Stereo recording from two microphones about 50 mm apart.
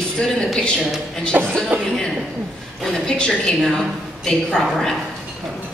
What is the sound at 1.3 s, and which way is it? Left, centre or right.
Speech, right.